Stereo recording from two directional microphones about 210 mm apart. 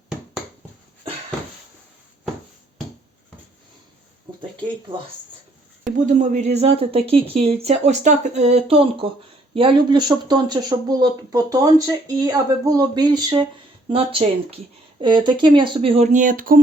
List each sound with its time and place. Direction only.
5.8 s speech: 35° right (ahead or behind)